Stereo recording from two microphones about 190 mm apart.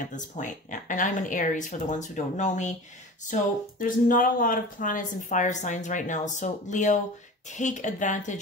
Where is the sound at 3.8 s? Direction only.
45° left (ahead or behind).